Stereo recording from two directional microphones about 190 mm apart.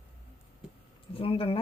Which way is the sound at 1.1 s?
30° left (ahead or behind).